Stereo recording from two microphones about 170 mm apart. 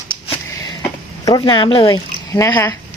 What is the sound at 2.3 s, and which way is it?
Speech, 20° left (ahead or behind).